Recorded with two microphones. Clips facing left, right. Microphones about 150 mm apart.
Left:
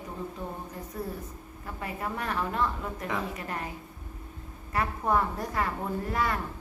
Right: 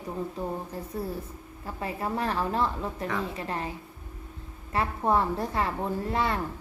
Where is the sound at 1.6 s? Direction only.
30° right (ahead or behind).